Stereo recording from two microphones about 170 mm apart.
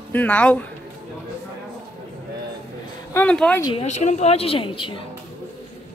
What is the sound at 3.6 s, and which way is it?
Speech, 30° left (ahead or behind).